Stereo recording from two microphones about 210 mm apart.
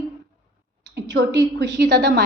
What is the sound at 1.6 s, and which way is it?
Speech, 55° right (ahead or behind).